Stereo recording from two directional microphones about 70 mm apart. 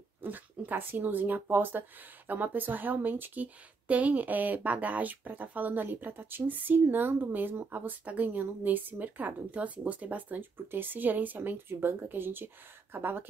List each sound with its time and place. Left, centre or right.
0.2 s speech: right